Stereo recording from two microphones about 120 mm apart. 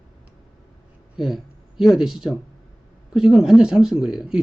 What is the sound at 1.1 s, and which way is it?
Speech, 5° right (ahead or behind).